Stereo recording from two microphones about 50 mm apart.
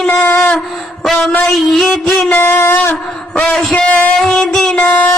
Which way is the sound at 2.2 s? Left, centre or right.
Left.